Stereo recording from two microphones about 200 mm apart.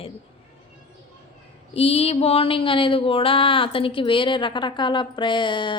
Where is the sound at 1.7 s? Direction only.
30° left (ahead or behind).